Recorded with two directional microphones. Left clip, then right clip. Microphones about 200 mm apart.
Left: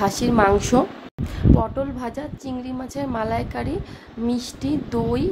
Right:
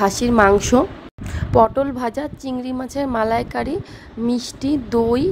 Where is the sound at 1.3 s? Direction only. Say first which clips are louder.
Right 8 dB; 35° right (ahead or behind).